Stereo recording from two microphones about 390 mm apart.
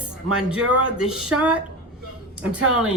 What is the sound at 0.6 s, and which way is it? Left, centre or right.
Speech, right.